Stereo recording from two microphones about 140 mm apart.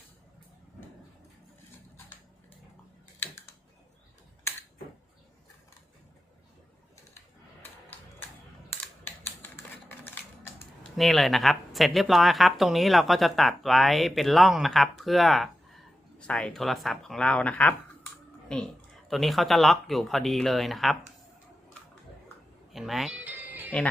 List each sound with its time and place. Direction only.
3.2 s typing: 20° left (ahead or behind)
8.8 s typing: 15° left (ahead or behind)
10.0 s a sound: 15° left (ahead or behind)
10.9 s speech: centre (ahead or behind)
22.7 s music: centre (ahead or behind)